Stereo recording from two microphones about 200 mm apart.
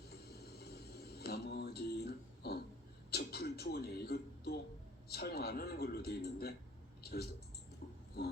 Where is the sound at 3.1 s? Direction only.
50° left (ahead or behind).